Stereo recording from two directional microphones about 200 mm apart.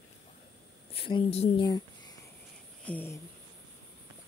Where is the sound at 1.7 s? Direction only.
20° left (ahead or behind).